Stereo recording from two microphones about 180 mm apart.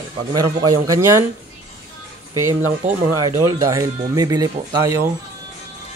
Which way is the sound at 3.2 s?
15° right (ahead or behind).